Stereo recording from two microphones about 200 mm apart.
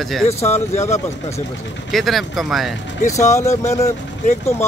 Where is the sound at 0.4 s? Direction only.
35° left (ahead or behind).